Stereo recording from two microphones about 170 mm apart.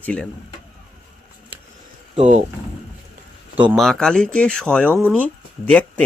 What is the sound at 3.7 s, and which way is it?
Speech, centre (ahead or behind).